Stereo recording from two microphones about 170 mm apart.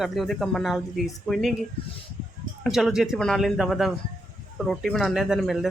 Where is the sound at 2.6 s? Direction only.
Centre (ahead or behind).